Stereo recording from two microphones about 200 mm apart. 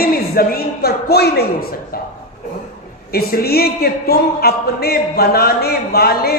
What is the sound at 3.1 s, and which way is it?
Speech, 50° left (ahead or behind).